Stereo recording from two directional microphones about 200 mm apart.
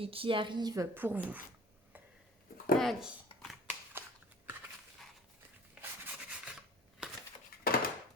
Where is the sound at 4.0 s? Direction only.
10° right (ahead or behind).